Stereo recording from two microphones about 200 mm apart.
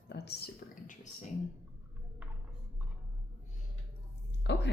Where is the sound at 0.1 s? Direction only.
55° left (ahead or behind).